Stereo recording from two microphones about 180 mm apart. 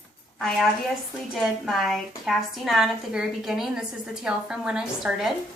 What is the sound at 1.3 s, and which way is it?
A woman's voice, centre (ahead or behind).